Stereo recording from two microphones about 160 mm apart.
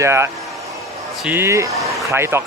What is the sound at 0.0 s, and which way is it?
Speech, 15° right (ahead or behind).